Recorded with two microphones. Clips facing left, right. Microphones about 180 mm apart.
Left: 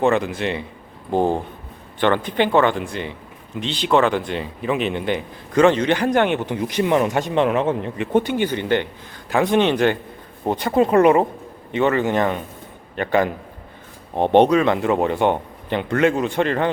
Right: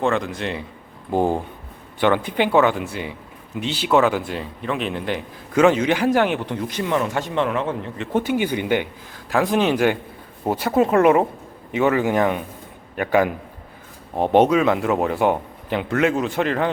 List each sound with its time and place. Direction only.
0.0 s speech: 5° left (ahead or behind)
1.1 s speech: 10° right (ahead or behind)
6.6 s a man's voice: 20° left (ahead or behind)
8.1 s speech: 5° right (ahead or behind)